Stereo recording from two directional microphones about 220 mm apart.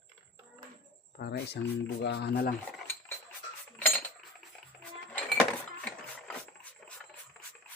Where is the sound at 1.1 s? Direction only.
45° left (ahead or behind).